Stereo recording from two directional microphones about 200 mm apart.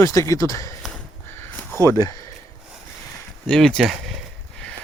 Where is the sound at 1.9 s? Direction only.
15° left (ahead or behind).